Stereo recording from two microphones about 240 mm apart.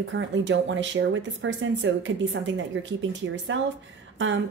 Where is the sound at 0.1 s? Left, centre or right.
Right.